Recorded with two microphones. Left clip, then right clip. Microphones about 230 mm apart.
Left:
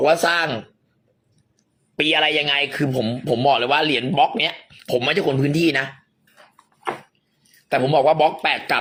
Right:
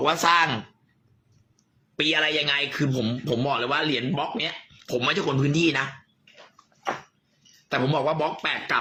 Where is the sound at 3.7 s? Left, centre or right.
Right.